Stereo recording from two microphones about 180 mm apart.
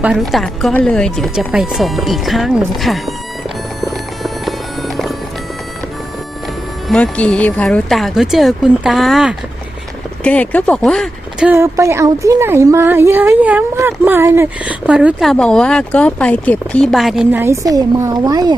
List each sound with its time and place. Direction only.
0.0 s speech: 5° right (ahead or behind)
3.8 s music: centre (ahead or behind)
6.8 s speech: 5° left (ahead or behind)
11.4 s speech: 15° right (ahead or behind)
17.4 s a woman's voice: 15° right (ahead or behind)